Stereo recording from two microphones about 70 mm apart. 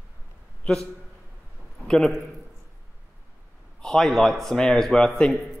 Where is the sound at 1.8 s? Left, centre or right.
Centre.